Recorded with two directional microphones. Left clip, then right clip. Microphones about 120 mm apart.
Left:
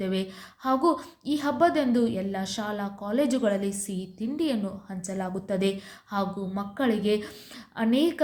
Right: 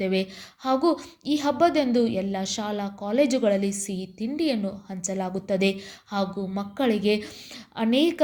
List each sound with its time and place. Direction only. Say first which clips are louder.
0.0 s speech: right 5 dB; 30° right (ahead or behind)